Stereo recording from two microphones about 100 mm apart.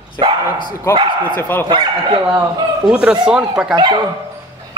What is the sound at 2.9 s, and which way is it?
Speech, 10° right (ahead or behind).